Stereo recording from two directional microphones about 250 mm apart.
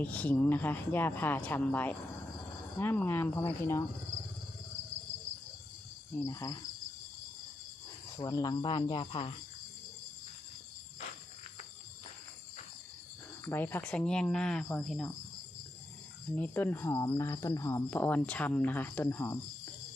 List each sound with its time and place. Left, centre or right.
0.0 s speech: centre
6.2 s speech: centre
8.2 s speech: centre
13.4 s speech: centre
16.3 s speech: centre